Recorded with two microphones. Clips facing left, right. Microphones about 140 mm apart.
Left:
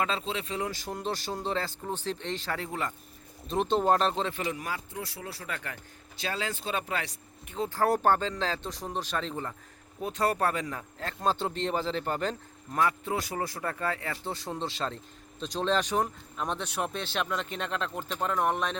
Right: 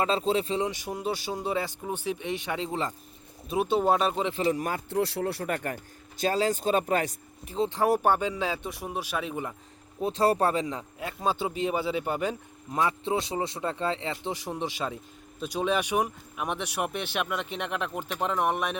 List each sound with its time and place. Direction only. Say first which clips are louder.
0.0 s speech: right 6 dB; 30° right (ahead or behind)
0.7 s speech: right 2 dB; 10° right (ahead or behind)
3.5 s speech: right 1 dB; 5° right (ahead or behind)
4.3 s speech: right 6 dB; 25° right (ahead or behind)
4.5 s speech: right 5 dB; 45° right (ahead or behind)
4.9 s speech: right 11 dB; 70° right (ahead or behind); by 7.2 s 45° right (ahead or behind)
7.4 s speech: right 5 dB; 30° right (ahead or behind)
7.7 s speech: even; 15° right (ahead or behind)
10.0 s speech: right 4 dB; 30° right (ahead or behind)
11.0 s speech: even; 5° right (ahead or behind)
12.8 s speech: right 1 dB; 25° right (ahead or behind)